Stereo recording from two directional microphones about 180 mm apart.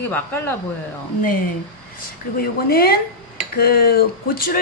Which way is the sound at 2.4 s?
55° left (ahead or behind).